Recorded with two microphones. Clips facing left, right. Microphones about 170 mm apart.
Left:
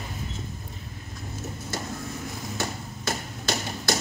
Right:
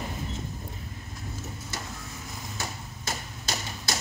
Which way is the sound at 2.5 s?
65° left (ahead or behind).